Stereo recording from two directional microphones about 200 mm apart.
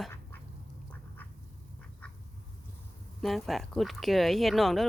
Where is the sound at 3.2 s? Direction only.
Centre (ahead or behind).